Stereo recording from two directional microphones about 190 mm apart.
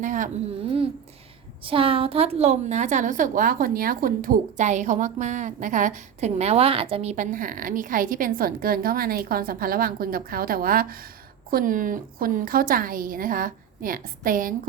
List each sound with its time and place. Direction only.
0.0 s a woman's voice: 40° right (ahead or behind)
1.6 s a woman's voice: 30° right (ahead or behind); by 14.7 s 45° right (ahead or behind)